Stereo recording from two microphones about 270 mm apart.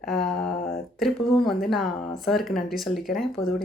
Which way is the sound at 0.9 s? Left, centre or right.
Centre.